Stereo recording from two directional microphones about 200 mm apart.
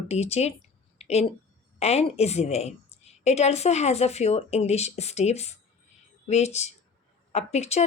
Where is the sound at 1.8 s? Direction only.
30° left (ahead or behind).